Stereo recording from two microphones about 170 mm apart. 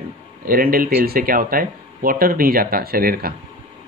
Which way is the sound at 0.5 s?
60° right (ahead or behind).